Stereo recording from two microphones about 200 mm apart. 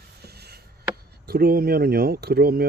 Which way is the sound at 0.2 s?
55° right (ahead or behind).